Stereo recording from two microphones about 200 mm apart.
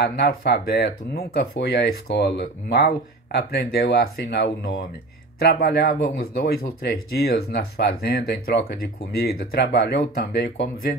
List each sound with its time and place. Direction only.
0.0 s speech: 55° left (ahead or behind)